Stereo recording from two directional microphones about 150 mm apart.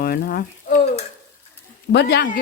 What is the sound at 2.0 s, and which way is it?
Speech, 75° left (ahead or behind).